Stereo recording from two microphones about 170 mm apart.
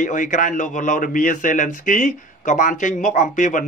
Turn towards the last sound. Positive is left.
turn(degrees=50)  # may be behind; listen again after turning